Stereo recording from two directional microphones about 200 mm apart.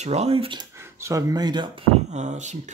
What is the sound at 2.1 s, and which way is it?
Speech, 35° right (ahead or behind).